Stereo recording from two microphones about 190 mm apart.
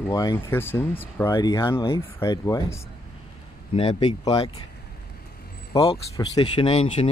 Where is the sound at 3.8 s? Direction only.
25° left (ahead or behind).